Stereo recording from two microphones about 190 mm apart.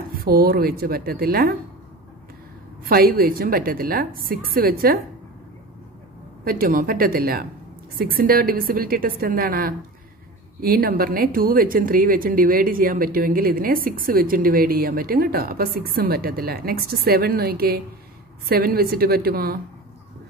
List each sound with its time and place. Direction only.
0.1 s speech: 50° right (ahead or behind)
2.8 s speech: 50° right (ahead or behind)
6.4 s speech: 50° right (ahead or behind)